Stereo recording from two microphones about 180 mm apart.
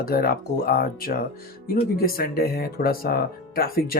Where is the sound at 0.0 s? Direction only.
55° left (ahead or behind).